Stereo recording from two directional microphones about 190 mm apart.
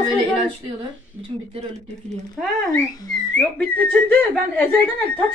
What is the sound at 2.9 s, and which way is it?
Speech, 20° left (ahead or behind).